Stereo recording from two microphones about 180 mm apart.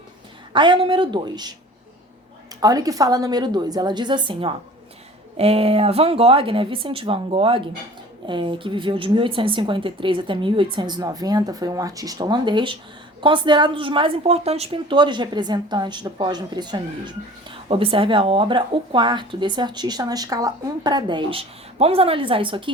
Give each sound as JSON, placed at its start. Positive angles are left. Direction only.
{"t": 0.5, "sound": "speech", "side_deg": -25}
{"t": 2.6, "sound": "speech", "side_deg": -20}